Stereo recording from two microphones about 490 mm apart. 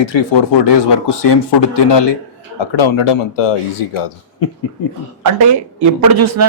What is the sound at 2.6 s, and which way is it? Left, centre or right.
Speech, left.